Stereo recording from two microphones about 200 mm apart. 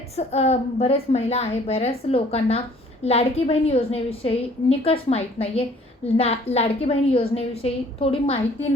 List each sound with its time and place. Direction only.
0.2 s a woman's voice: 30° left (ahead or behind)